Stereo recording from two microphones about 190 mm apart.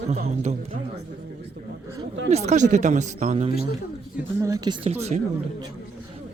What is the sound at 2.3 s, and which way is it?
Speech, 40° right (ahead or behind).